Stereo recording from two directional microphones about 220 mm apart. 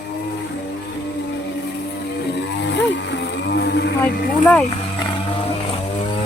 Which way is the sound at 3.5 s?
45° left (ahead or behind).